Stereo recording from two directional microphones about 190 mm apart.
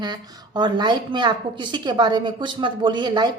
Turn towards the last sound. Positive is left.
turn(degrees=-20)  # may be behind; listen again after turning